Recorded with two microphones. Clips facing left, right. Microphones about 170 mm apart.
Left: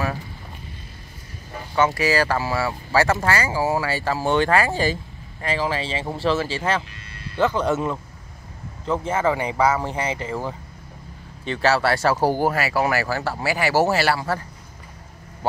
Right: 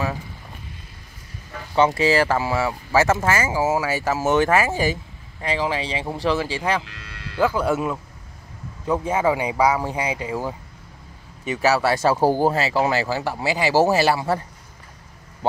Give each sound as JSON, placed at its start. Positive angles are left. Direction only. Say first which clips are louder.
{"t": 1.9, "sound": "speech", "louder": "right 2 dB", "side_deg": -20}
{"t": 6.8, "sound": "music", "louder": "even", "side_deg": -90}
{"t": 7.3, "sound": "speech", "louder": "even", "side_deg": -10}